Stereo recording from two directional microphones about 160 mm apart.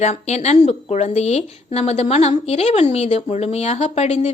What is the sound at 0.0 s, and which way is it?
Speech, 45° left (ahead or behind).